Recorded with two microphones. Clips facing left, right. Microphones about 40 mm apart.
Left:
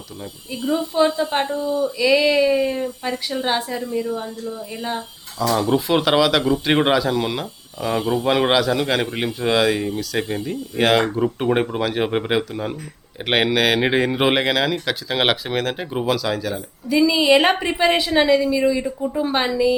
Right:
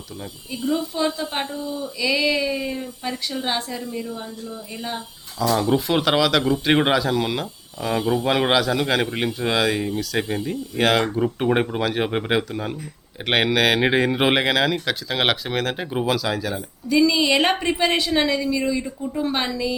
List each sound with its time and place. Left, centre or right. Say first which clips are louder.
0.5 s a woman's voice: left 3 dB; left; by 16.6 s centre
16.9 s a woman's voice: left 3 dB; centre